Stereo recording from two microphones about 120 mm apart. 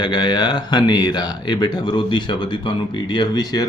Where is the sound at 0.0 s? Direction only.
40° left (ahead or behind).